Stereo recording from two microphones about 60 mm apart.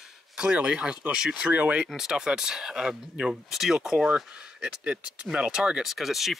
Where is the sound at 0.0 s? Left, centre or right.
Centre.